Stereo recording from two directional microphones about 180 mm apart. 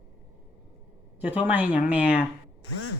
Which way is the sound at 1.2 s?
10° right (ahead or behind).